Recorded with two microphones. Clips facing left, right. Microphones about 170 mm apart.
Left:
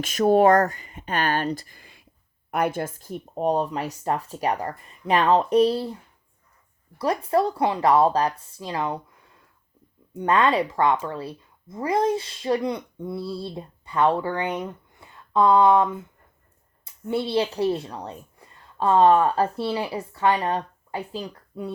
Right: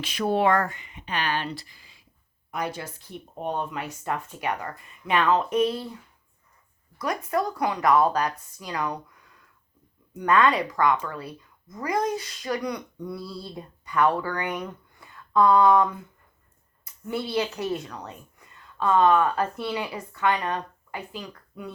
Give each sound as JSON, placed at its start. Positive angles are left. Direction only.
{"t": 0.0, "sound": "speech", "side_deg": 45}
{"t": 7.0, "sound": "speech", "side_deg": 30}